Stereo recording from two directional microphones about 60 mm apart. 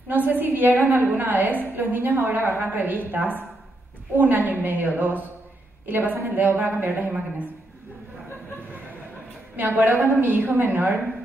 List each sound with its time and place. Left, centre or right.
0.1 s a woman's voice: right
9.6 s a woman's voice: right